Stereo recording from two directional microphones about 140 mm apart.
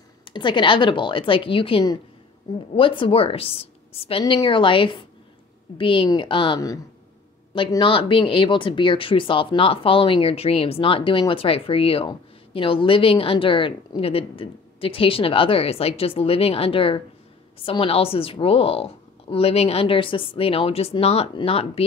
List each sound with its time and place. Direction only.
0.3 s a woman's voice: 35° left (ahead or behind)